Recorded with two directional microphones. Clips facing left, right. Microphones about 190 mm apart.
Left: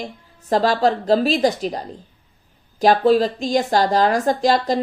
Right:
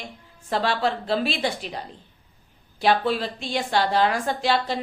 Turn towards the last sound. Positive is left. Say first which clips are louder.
# left 6 dB
turn(degrees=40)  # may be behind; listen again after turning